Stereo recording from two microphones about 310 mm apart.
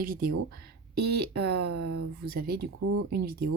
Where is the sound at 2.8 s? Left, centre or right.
Right.